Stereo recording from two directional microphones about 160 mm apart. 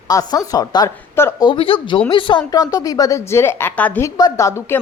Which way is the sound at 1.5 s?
35° left (ahead or behind).